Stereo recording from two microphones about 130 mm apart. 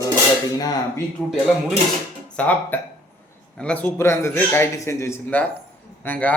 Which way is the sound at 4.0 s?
20° left (ahead or behind).